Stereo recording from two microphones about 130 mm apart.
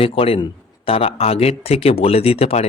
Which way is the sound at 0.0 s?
45° left (ahead or behind).